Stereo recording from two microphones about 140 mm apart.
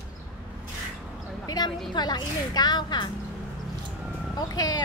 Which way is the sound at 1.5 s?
30° left (ahead or behind).